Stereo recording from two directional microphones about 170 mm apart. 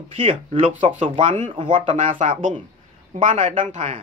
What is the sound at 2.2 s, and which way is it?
Speech, 50° right (ahead or behind).